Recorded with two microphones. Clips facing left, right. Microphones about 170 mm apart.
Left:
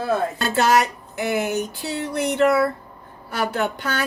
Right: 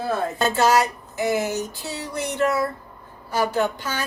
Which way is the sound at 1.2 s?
60° left (ahead or behind).